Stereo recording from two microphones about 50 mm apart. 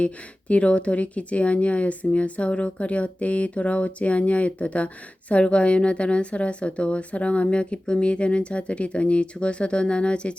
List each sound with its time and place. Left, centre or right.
0.0 s a woman's voice: left